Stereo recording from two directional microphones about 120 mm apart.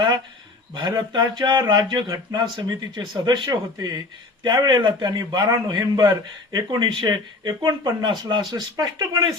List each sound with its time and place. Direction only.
0.7 s a man's voice: 35° right (ahead or behind)